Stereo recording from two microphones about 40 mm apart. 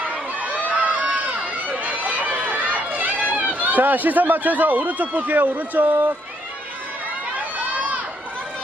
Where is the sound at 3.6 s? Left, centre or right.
Right.